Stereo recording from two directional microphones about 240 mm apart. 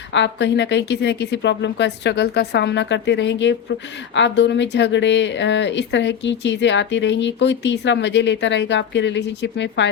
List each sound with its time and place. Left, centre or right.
0.1 s speech: left